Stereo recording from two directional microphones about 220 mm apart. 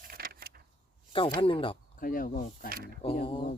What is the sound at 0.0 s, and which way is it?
Keys jangling, 40° right (ahead or behind).